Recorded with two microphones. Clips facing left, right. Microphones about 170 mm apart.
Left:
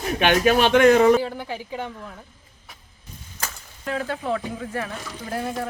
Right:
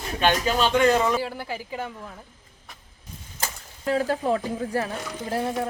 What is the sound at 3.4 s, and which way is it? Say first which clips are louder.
Speech: right 2 dB; 30° right (ahead or behind).